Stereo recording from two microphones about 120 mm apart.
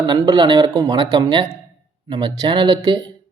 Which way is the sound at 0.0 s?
40° right (ahead or behind).